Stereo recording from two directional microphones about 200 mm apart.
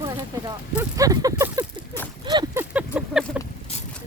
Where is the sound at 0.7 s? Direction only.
15° right (ahead or behind).